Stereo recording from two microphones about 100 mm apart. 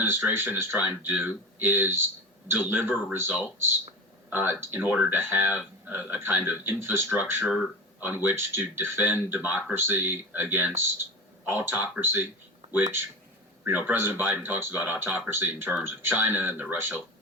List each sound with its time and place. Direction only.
0.0 s speech: 25° right (ahead or behind)